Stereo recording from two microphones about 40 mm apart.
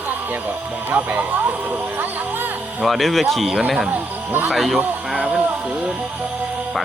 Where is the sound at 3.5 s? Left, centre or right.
Centre.